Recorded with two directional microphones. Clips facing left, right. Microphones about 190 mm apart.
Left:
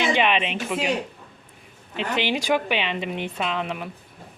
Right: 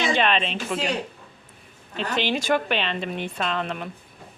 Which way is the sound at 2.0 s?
15° left (ahead or behind).